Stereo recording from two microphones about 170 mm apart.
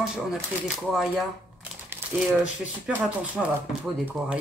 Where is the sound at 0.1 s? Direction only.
5° right (ahead or behind).